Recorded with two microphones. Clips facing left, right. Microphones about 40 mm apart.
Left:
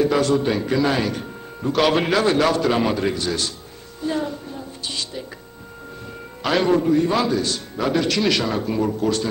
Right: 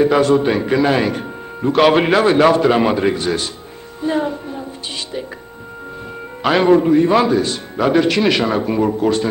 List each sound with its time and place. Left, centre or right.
0.0 s a man's voice: right
4.0 s music: right
6.4 s a man's voice: right